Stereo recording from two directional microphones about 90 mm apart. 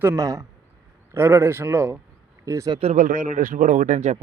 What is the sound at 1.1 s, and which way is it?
Speech, 25° right (ahead or behind).